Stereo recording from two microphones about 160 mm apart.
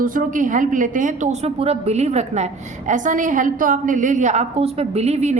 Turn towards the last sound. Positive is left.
turn(degrees=-45)  # may be behind; listen again after turning